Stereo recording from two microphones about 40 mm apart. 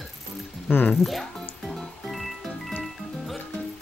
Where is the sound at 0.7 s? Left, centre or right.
Left.